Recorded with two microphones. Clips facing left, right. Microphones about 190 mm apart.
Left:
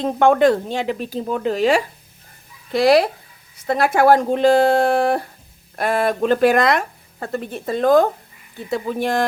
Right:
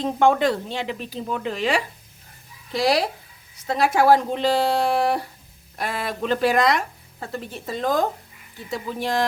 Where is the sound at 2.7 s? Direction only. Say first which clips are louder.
Left 7 dB; 55° left (ahead or behind).